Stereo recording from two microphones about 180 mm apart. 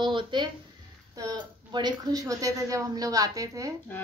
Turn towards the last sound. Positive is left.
turn(degrees=-20)  # may be behind; listen again after turning